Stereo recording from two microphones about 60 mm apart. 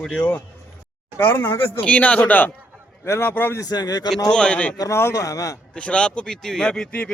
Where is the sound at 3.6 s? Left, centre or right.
Left.